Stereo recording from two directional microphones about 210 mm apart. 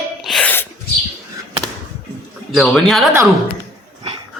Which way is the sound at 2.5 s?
Centre (ahead or behind).